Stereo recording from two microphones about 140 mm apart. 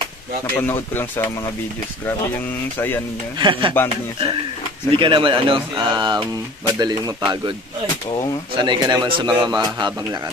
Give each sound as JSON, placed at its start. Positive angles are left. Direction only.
{"t": 0.6, "sound": "speech", "side_deg": 15}
{"t": 3.3, "sound": "a man's voice", "side_deg": -35}
{"t": 4.9, "sound": "a man's voice", "side_deg": -35}
{"t": 8.5, "sound": "a man's voice", "side_deg": -30}